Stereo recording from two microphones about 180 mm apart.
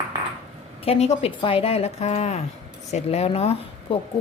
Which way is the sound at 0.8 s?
35° left (ahead or behind).